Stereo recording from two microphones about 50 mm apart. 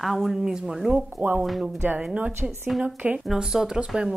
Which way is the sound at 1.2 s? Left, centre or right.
Right.